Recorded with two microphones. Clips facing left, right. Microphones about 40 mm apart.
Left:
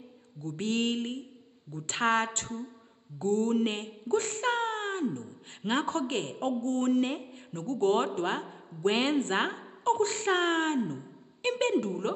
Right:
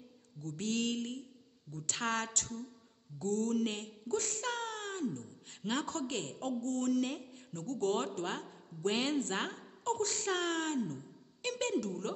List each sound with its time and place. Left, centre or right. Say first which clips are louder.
0.4 s a woman's voice: left 5 dB; left